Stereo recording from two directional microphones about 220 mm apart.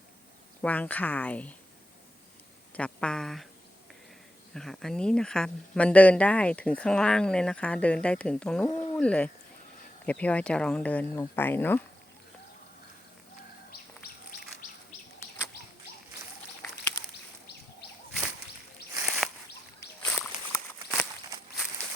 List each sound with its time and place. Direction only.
0.6 s speech: 5° left (ahead or behind)
2.7 s speech: 5° left (ahead or behind)
4.5 s speech: centre (ahead or behind)
8.7 s a sound: 25° left (ahead or behind)
9.0 s speech: 5° left (ahead or behind)
18.9 s a sound: 10° right (ahead or behind)
20.1 s walk: centre (ahead or behind)